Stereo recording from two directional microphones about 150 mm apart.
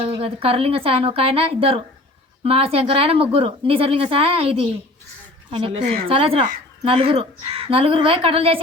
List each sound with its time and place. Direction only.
0.0 s speech: 40° right (ahead or behind)